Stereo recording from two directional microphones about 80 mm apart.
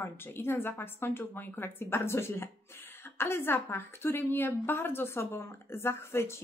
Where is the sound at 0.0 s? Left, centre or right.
Left.